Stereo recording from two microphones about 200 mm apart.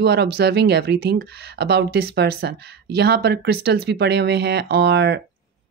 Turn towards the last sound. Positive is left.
turn(degrees=-55)  # may be behind; listen again after turning